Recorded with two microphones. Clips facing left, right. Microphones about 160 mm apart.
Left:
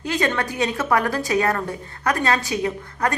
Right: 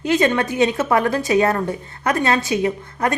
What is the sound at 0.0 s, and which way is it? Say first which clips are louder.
A woman's voice: right 5 dB; 20° right (ahead or behind).